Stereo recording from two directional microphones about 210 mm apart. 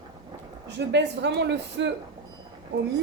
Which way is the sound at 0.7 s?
55° right (ahead or behind).